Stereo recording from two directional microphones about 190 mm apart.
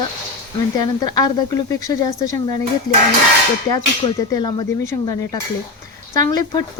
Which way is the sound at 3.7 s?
20° left (ahead or behind).